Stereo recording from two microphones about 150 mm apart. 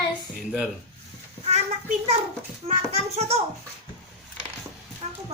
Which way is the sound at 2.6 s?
45° right (ahead or behind).